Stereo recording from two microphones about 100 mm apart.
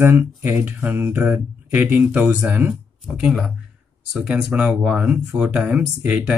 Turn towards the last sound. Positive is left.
turn(degrees=-10)  # may be behind; listen again after turning